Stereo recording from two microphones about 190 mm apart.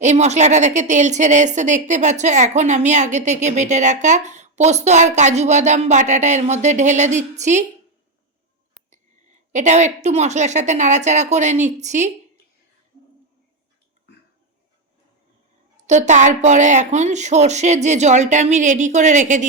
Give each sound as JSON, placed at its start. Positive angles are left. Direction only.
{"t": 0.0, "sound": "a woman's voice", "side_deg": -35}
{"t": 8.9, "sound": "a woman's voice", "side_deg": -40}
{"t": 15.8, "sound": "a woman's voice", "side_deg": -40}